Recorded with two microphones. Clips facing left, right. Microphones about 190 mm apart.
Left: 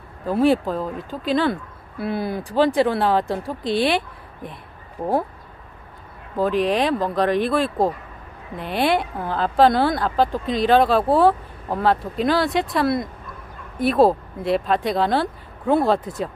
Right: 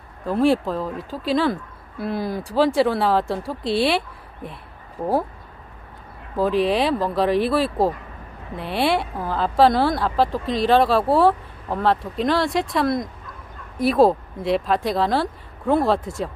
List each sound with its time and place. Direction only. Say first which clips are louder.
0.2 s speech: left 1 dB; centre (ahead or behind)
6.3 s speech: even; centre (ahead or behind)